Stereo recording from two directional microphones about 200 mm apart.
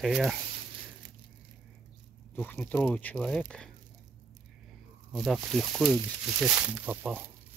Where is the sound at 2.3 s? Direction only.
10° left (ahead or behind).